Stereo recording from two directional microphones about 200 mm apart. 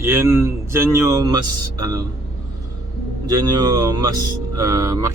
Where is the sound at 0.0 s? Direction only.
15° right (ahead or behind).